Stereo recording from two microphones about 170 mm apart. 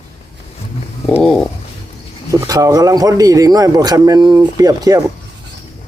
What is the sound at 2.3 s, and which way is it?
A man's voice, 20° right (ahead or behind).